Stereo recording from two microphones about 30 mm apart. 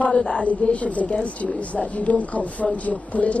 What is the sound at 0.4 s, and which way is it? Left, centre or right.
Speech, left.